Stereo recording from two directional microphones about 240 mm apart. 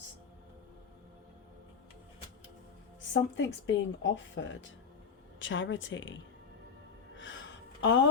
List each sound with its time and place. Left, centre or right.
3.1 s speech: left
7.2 s gasp: left